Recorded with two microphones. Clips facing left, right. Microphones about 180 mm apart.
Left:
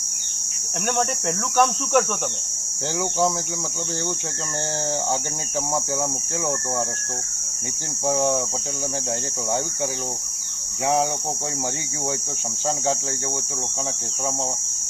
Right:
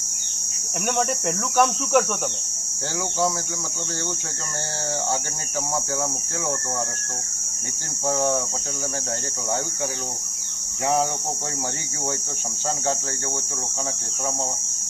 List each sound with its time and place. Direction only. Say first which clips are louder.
1.5 s cricket: even; centre (ahead or behind)
8.0 s speech: left 1 dB; 15° left (ahead or behind)